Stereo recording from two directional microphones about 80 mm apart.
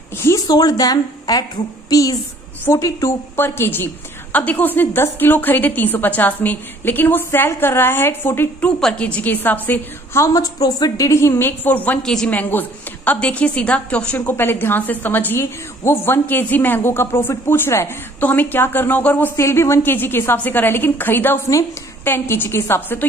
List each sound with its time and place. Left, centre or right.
0.5 s a woman's voice: left
2.6 s a woman's voice: left
8.6 s a woman's voice: centre
10.3 s a woman's voice: left
12.0 s a woman's voice: centre
12.3 s a woman's voice: left
19.3 s a woman's voice: left